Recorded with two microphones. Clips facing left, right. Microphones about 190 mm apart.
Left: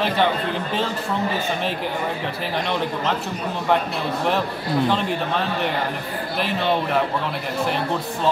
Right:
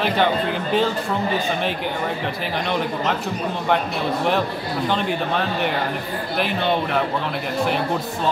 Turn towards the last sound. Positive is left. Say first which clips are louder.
# even
turn(degrees=0)  # may be behind; listen again after turning